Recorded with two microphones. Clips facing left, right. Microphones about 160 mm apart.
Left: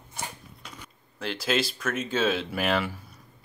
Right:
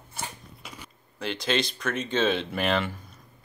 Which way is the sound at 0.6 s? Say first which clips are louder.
Right 1 dB; 5° right (ahead or behind).